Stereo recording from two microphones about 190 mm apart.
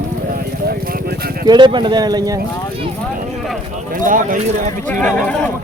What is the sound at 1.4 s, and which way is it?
Speech, 25° right (ahead or behind).